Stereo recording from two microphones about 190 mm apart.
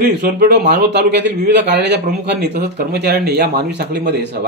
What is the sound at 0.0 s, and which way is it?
Speech, 55° right (ahead or behind).